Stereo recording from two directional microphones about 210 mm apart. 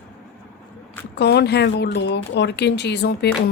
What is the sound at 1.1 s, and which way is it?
Speech, 50° left (ahead or behind).